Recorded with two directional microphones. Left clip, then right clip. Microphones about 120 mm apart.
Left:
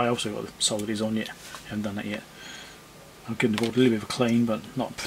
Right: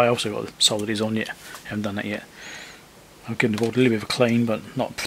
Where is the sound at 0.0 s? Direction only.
35° right (ahead or behind).